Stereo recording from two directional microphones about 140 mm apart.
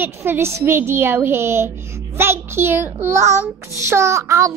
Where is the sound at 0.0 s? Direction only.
15° right (ahead or behind).